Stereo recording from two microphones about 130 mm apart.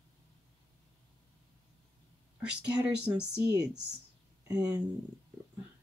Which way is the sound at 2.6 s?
10° right (ahead or behind).